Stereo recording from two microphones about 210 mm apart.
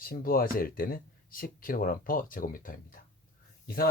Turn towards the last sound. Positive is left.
turn(degrees=45)  # may be behind; listen again after turning